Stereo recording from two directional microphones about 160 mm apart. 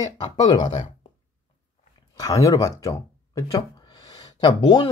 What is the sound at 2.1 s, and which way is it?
Speech, 20° left (ahead or behind).